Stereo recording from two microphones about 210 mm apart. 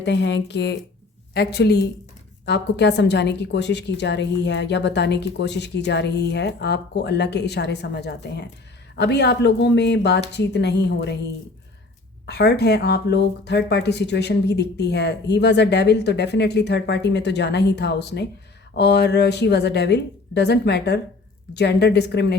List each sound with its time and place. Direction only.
0.0 s a woman's voice: 55° left (ahead or behind)
12.2 s speech: 50° left (ahead or behind)